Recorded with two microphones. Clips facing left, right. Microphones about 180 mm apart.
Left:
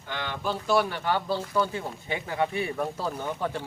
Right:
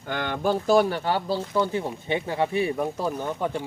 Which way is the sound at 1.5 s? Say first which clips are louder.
Right 3 dB; 20° right (ahead or behind).